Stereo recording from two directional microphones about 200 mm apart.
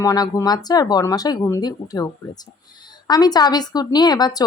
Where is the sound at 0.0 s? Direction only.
15° left (ahead or behind).